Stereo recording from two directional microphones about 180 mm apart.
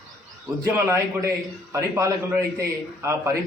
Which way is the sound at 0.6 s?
15° right (ahead or behind).